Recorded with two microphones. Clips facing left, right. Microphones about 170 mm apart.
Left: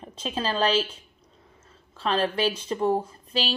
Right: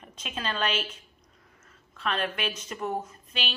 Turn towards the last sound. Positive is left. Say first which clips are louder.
# left 7 dB
turn(degrees=30)  # may be behind; listen again after turning